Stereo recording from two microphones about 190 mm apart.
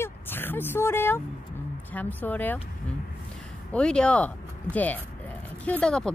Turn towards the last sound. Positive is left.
turn(degrees=5)  # may be behind; listen again after turning